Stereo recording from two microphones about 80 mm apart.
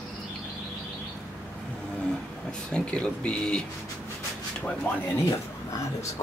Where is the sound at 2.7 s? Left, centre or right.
Centre.